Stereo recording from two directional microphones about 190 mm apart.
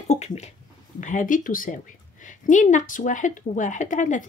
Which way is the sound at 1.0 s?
45° left (ahead or behind).